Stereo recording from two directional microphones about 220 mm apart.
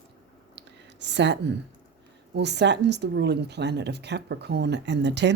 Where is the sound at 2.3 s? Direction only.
50° right (ahead or behind).